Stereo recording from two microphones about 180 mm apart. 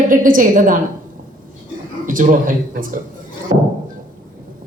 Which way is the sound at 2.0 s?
50° right (ahead or behind).